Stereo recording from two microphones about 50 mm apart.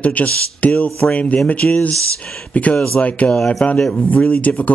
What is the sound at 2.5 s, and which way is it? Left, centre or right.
Speech, left.